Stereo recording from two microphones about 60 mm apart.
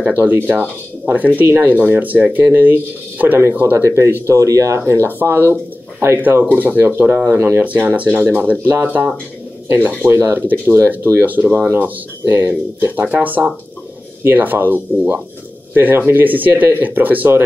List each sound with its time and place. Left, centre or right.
0.0 s speech: right
3.7 s speech: right
4.3 s speech: right
7.6 s speech: right
12.4 s speech: right
12.9 s speech: right